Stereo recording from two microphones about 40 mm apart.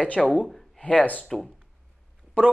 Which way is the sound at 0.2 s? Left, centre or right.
Centre.